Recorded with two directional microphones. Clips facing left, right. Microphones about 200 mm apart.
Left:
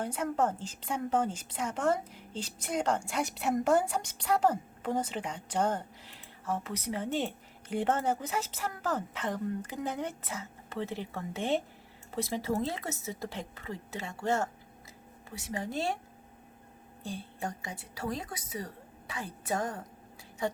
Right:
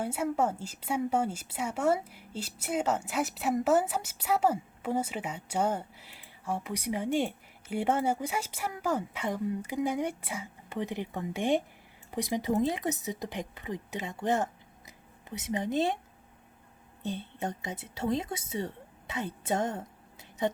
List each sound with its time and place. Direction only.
0.0 s a woman's voice: 10° right (ahead or behind)
17.0 s a woman's voice: 20° right (ahead or behind)